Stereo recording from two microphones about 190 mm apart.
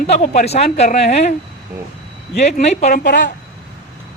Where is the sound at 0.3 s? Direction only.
35° left (ahead or behind).